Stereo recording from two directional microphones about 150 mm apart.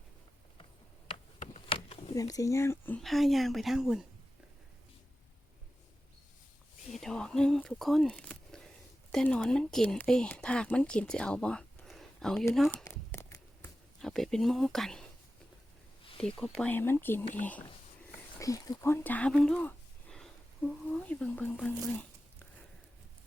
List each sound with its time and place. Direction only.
1.7 s a sound: 40° left (ahead or behind)
2.1 s speech: 20° left (ahead or behind)
3.0 s speech: centre (ahead or behind)
6.9 s speech: 5° left (ahead or behind)
12.7 s a sound: 15° left (ahead or behind)
14.0 s speech: 5° left (ahead or behind)
16.1 s speech: 5° left (ahead or behind)
18.3 s speech: 20° left (ahead or behind)